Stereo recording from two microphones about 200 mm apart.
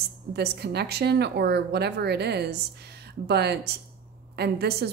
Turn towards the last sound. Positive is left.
turn(degrees=-55)  # may be behind; listen again after turning